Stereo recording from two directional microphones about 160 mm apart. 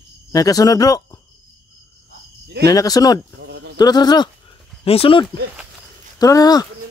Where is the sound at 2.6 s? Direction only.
25° left (ahead or behind).